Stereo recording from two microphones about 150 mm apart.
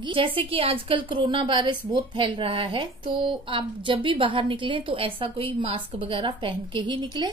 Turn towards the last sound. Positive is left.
turn(degrees=-30)  # may be behind; listen again after turning